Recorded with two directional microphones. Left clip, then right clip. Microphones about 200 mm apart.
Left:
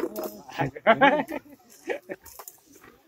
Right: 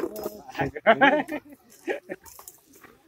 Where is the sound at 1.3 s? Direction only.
45° right (ahead or behind).